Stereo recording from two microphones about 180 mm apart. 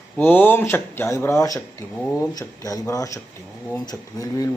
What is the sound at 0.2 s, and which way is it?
Speech, 10° left (ahead or behind).